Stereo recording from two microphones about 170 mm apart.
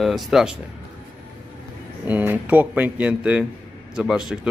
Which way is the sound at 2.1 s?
10° right (ahead or behind).